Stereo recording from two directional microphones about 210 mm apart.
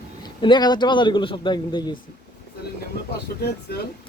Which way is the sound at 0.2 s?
20° left (ahead or behind).